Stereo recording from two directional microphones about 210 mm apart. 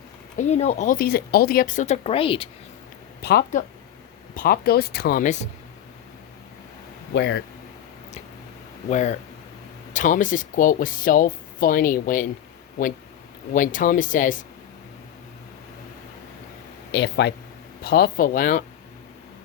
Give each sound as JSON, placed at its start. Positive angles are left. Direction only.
{"t": 0.3, "sound": "speech", "side_deg": 30}
{"t": 3.2, "sound": "speech", "side_deg": 50}
{"t": 7.1, "sound": "speech", "side_deg": 55}
{"t": 8.9, "sound": "speech", "side_deg": 35}
{"t": 13.5, "sound": "speech", "side_deg": 40}
{"t": 16.9, "sound": "speech", "side_deg": 55}